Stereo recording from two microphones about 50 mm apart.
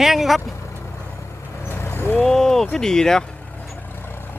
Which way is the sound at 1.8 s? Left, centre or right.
Left.